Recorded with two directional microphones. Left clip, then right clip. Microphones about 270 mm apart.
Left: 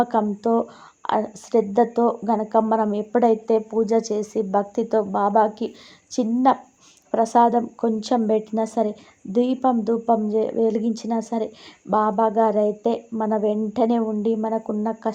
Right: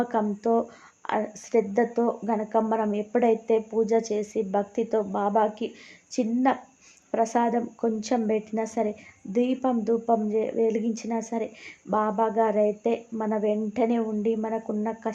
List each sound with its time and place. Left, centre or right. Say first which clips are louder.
0.0 s speech: left 5 dB; centre